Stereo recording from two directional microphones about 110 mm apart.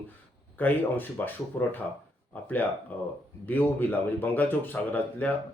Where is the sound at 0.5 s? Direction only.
15° left (ahead or behind).